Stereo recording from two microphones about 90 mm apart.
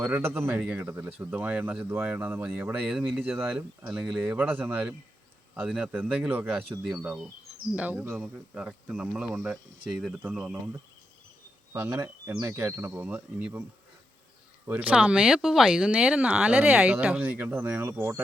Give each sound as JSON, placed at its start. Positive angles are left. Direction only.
{"t": 0.0, "sound": "speech", "side_deg": -25}
{"t": 1.3, "sound": "speech", "side_deg": -15}
{"t": 11.7, "sound": "speech", "side_deg": -30}
{"t": 14.7, "sound": "speech", "side_deg": -15}